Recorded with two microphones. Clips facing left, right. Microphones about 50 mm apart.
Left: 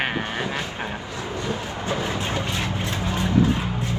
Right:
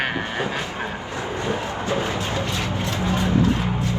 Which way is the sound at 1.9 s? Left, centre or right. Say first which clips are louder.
Right 1 dB; right.